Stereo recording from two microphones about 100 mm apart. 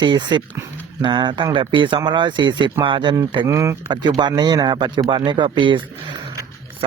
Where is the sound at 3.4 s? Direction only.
30° right (ahead or behind).